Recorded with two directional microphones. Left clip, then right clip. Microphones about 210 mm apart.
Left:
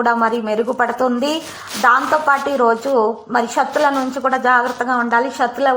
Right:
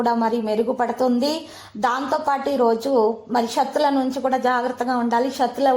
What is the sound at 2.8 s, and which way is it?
Speech, 15° left (ahead or behind).